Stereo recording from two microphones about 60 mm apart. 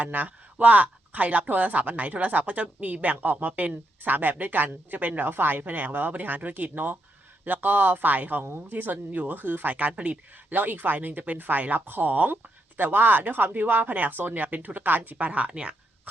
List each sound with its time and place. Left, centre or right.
0.0 s speech: right